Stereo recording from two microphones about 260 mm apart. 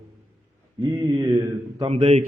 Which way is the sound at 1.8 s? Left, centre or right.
Right.